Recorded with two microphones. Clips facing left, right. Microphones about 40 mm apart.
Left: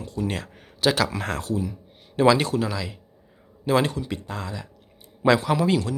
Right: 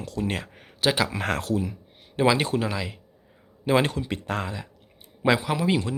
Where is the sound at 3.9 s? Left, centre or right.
Right.